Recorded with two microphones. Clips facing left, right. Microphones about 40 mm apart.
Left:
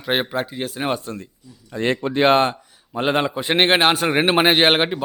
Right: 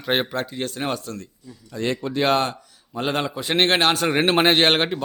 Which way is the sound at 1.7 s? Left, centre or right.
Left.